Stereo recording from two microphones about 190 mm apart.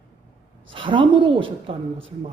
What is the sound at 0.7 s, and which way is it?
A woman's voice, 25° right (ahead or behind).